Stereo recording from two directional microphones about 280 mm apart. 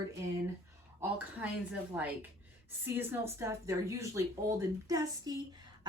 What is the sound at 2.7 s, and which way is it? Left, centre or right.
Speech, centre.